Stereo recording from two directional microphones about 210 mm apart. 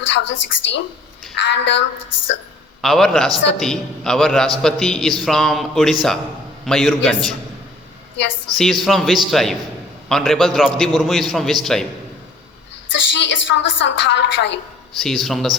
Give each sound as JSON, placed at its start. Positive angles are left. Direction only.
{"t": 0.1, "sound": "a woman's voice", "side_deg": 60}
{"t": 2.8, "sound": "a man's voice", "side_deg": 0}
{"t": 8.1, "sound": "a woman's voice", "side_deg": 60}
{"t": 8.5, "sound": "a man's voice", "side_deg": 0}
{"t": 12.9, "sound": "a woman's voice", "side_deg": 60}
{"t": 14.9, "sound": "a man's voice", "side_deg": 0}